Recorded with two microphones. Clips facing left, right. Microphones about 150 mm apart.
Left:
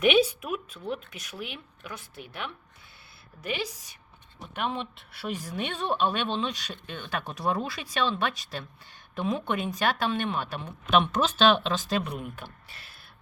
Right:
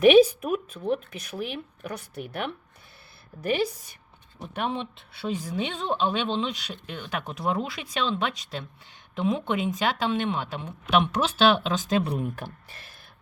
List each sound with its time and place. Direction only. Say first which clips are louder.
0.0 s speech: right 7 dB; 40° right (ahead or behind)
4.5 s speech: right 2 dB; 30° right (ahead or behind)
5.3 s speech: right 3 dB; 20° right (ahead or behind)
12.0 s speech: right 6 dB; 35° right (ahead or behind)